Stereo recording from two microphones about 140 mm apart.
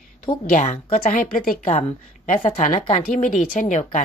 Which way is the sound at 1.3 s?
75° left (ahead or behind).